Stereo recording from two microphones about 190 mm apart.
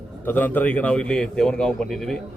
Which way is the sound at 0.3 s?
10° left (ahead or behind).